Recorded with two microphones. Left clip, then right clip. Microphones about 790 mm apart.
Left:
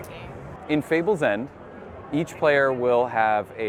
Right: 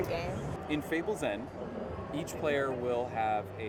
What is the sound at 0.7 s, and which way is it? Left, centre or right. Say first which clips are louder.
Speech: left 12 dB; left.